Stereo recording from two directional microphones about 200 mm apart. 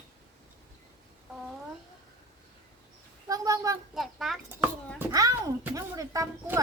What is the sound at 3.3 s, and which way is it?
Speech, 15° right (ahead or behind).